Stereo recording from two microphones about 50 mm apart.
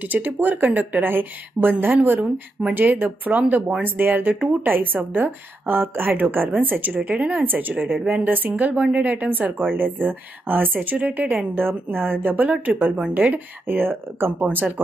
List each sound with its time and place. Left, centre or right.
0.0 s a woman's voice: right